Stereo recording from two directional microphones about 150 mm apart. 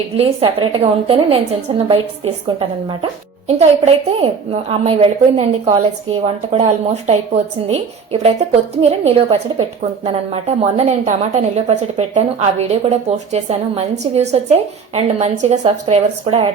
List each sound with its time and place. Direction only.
0.2 s a woman's voice: 40° right (ahead or behind)
10.8 s a woman's voice: 45° right (ahead or behind)